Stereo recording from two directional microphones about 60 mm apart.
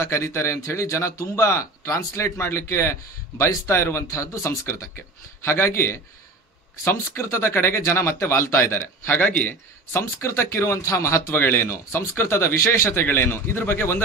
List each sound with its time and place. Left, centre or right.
0.0 s speech: left
9.9 s speech: left
12.9 s speech: left